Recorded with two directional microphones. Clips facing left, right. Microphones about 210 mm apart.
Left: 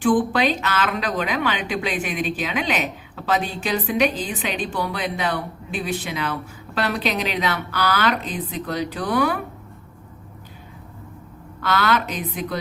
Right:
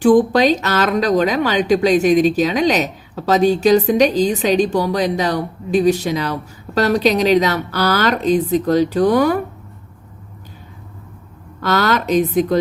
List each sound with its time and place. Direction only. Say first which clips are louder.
0.0 s speech: right 7 dB; 40° right (ahead or behind)
11.6 s speech: right 4 dB; 40° right (ahead or behind)